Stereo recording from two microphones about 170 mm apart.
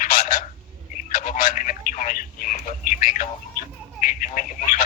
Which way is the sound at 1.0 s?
55° left (ahead or behind).